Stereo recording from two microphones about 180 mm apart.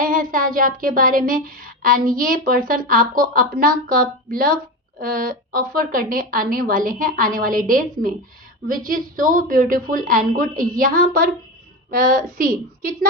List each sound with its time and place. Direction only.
0.0 s speech: 50° right (ahead or behind)